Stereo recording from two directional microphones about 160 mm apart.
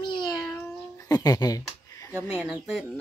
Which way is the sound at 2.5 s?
5° right (ahead or behind).